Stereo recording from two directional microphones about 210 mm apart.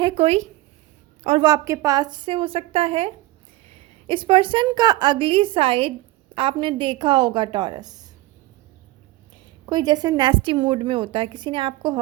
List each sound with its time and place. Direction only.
0.0 s a woman's voice: 30° right (ahead or behind)
1.5 s a woman's voice: 15° right (ahead or behind)
9.6 s a woman's voice: 20° right (ahead or behind)